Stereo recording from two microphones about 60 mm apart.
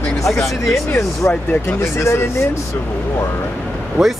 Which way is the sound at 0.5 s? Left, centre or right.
Centre.